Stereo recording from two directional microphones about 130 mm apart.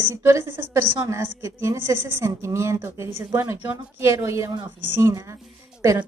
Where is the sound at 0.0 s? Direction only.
20° right (ahead or behind).